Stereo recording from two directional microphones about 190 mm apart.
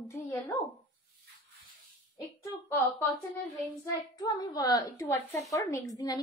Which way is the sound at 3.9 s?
20° left (ahead or behind).